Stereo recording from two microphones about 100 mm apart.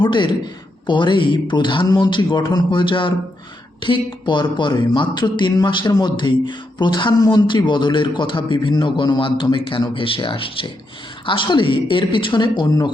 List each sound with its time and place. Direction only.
0.0 s speech: 55° left (ahead or behind)